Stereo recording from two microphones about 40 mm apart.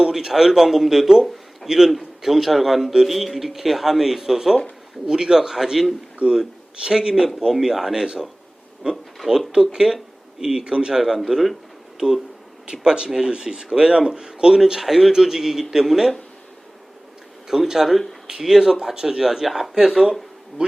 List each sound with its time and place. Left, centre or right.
0.1 s speech: centre
6.1 s a man's voice: right
11.3 s speech: centre
17.5 s speech: centre
20.6 s a man's voice: right